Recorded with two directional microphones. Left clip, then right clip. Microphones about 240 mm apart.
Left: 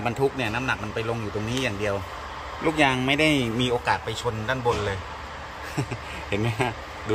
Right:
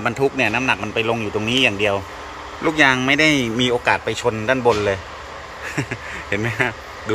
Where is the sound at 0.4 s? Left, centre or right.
Right.